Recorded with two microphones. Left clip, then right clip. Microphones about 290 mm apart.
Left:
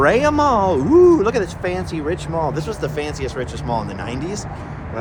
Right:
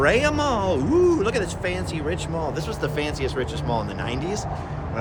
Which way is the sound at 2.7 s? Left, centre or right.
Centre.